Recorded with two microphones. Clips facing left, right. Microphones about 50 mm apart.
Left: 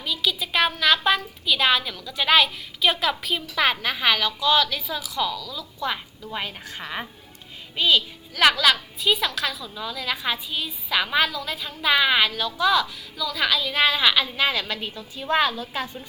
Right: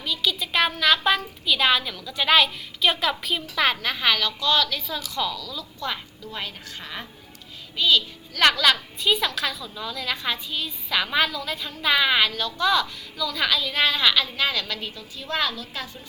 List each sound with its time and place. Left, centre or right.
0.0 s a woman's voice: centre
8.4 s a woman's voice: centre